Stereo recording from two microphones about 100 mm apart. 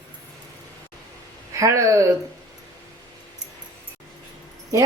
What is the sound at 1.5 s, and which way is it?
Speech, 30° right (ahead or behind).